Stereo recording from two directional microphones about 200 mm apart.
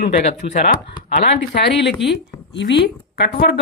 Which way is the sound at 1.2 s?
60° left (ahead or behind).